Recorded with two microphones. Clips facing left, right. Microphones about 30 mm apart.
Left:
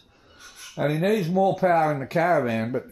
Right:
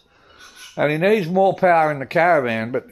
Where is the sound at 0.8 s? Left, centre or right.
Right.